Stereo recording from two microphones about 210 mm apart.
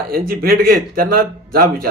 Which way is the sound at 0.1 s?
45° right (ahead or behind).